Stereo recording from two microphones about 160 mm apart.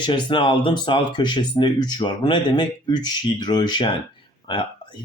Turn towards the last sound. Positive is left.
turn(degrees=30)  # may be behind; listen again after turning